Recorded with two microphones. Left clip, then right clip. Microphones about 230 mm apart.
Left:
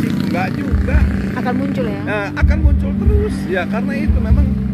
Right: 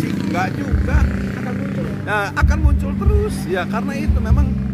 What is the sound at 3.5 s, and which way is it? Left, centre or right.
Speech, centre.